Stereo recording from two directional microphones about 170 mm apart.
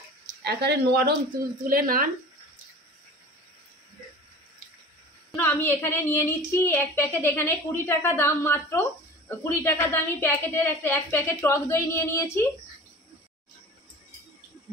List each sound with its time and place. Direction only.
0.4 s speech: 70° right (ahead or behind)
1.7 s speech: 55° right (ahead or behind)
5.4 s speech: 10° left (ahead or behind)